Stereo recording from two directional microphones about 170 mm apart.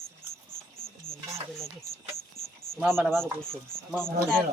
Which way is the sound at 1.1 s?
20° left (ahead or behind).